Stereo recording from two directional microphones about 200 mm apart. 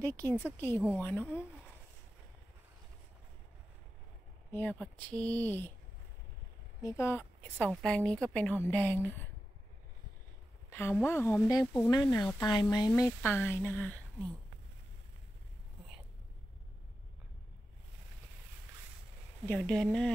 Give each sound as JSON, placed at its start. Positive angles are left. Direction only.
{"t": 0.0, "sound": "a woman's voice", "side_deg": 10}
{"t": 4.5, "sound": "a woman's voice", "side_deg": 10}
{"t": 6.8, "sound": "a woman's voice", "side_deg": 15}
{"t": 10.7, "sound": "a woman's voice", "side_deg": 10}
{"t": 19.4, "sound": "speech", "side_deg": 5}